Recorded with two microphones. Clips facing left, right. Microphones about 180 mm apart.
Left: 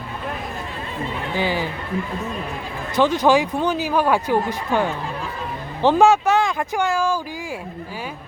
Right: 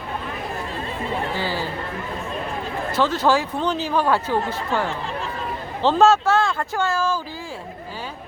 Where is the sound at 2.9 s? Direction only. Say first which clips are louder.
Left 3 dB; 15° left (ahead or behind).